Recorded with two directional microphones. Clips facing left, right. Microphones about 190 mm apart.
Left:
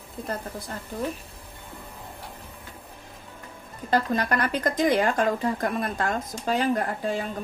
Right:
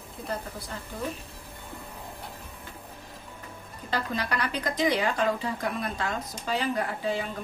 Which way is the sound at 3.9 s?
50° left (ahead or behind).